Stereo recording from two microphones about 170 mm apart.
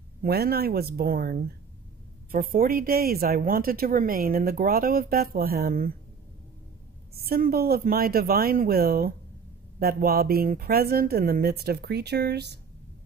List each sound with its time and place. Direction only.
0.2 s speech: 65° right (ahead or behind)
7.2 s speech: 60° right (ahead or behind)